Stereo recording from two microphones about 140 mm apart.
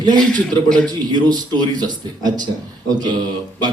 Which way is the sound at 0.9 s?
30° right (ahead or behind).